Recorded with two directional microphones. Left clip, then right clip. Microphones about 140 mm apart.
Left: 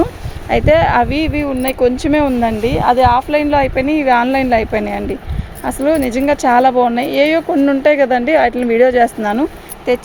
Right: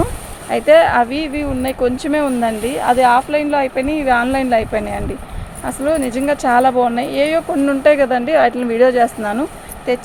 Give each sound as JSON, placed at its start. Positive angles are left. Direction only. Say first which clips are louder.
{"t": 0.5, "sound": "speech", "louder": "right 1 dB", "side_deg": 60}